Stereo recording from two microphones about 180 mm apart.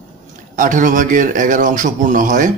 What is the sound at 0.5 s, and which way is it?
Speech, 45° right (ahead or behind).